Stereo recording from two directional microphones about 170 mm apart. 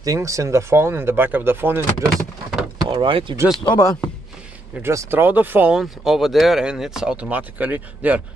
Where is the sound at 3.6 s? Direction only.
25° left (ahead or behind).